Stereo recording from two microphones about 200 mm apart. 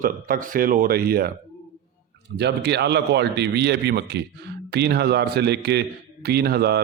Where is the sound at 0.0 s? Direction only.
45° right (ahead or behind).